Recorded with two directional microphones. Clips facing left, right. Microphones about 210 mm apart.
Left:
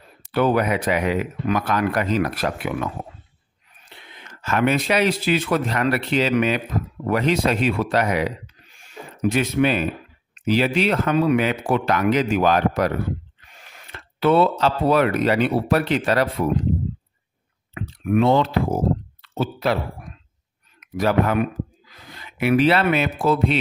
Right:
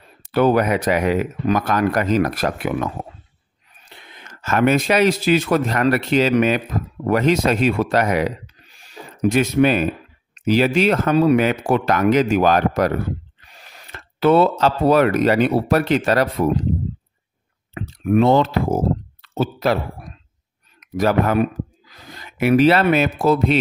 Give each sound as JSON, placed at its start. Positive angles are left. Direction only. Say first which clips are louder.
{"t": 0.3, "sound": "speech", "louder": "right 3 dB", "side_deg": -40}
{"t": 8.7, "sound": "a sound", "louder": "even", "side_deg": -40}
{"t": 10.4, "sound": "speech", "louder": "right 3 dB", "side_deg": -45}
{"t": 13.4, "sound": "gasp", "louder": "right 2 dB", "side_deg": -35}
{"t": 14.6, "sound": "speech", "louder": "right 3 dB", "side_deg": -45}
{"t": 17.7, "sound": "speech", "louder": "right 3 dB", "side_deg": -35}
{"t": 19.2, "sound": "a sound", "louder": "right 3 dB", "side_deg": -45}
{"t": 20.8, "sound": "speech", "louder": "right 2 dB", "side_deg": -40}